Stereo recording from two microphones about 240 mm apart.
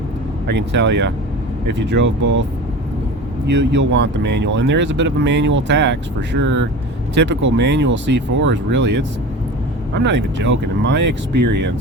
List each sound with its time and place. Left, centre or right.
0.4 s speech: right
3.4 s speech: right